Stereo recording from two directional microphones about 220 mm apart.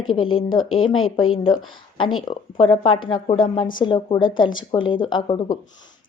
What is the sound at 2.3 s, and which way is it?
A woman's voice, 25° left (ahead or behind).